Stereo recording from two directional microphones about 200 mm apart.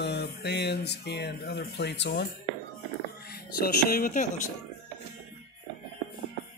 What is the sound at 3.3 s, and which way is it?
Speech, 50° left (ahead or behind).